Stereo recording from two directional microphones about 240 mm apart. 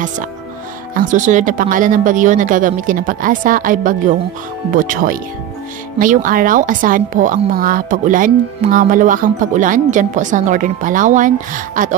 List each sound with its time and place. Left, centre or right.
0.9 s a woman's voice: right